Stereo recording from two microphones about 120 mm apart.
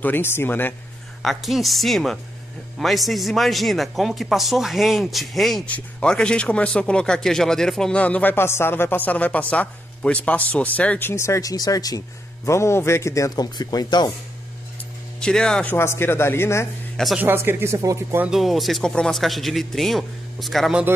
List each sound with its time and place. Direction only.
0.0 s speech: 15° left (ahead or behind)
1.2 s speech: centre (ahead or behind); by 14.1 s 35° left (ahead or behind)
15.1 s speech: 5° left (ahead or behind)
15.7 s speech: 20° left (ahead or behind)
16.9 s speech: centre (ahead or behind)
17.2 s speech: 15° right (ahead or behind)
18.3 s speech: centre (ahead or behind)